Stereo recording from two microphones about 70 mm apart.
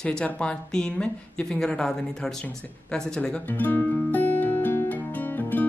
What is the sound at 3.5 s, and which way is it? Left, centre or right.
Music, left.